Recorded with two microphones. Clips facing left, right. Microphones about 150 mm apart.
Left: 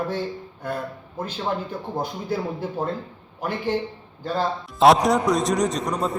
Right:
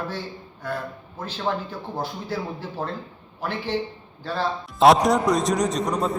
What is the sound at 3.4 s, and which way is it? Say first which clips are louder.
Speech: left 3 dB; 10° left (ahead or behind).